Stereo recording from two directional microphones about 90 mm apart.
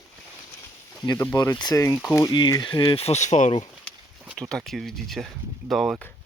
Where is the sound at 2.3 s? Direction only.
55° left (ahead or behind).